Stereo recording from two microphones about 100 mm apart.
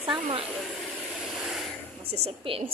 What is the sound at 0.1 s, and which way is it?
Speech, 60° right (ahead or behind).